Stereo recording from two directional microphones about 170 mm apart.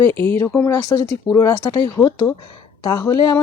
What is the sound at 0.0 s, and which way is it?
Speech, 15° left (ahead or behind).